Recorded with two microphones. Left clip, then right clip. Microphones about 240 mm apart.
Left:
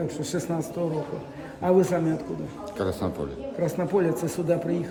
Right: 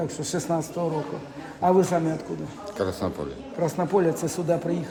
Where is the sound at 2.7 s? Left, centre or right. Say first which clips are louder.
Right 1 dB; centre.